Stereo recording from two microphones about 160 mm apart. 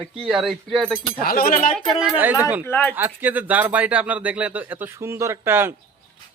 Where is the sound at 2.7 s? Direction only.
10° left (ahead or behind).